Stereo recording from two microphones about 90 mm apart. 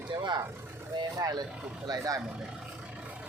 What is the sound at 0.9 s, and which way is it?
Speech, 50° right (ahead or behind).